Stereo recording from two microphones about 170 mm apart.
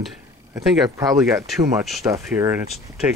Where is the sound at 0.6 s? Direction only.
20° right (ahead or behind).